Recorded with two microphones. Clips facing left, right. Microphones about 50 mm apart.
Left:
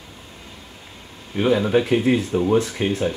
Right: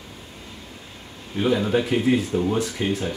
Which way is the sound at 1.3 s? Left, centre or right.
Left.